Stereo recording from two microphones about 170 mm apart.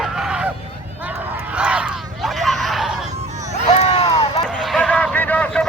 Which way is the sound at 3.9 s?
35° left (ahead or behind).